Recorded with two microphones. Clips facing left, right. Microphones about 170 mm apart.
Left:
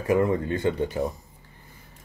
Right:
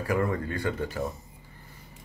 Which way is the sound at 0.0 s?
20° left (ahead or behind).